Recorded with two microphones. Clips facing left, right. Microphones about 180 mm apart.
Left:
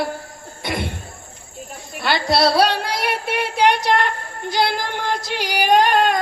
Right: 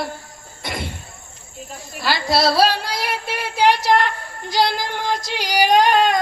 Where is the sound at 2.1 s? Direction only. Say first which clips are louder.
Left 1 dB; 60° left (ahead or behind).